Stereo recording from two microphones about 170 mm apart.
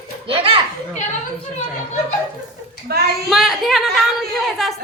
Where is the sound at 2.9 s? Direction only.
65° right (ahead or behind).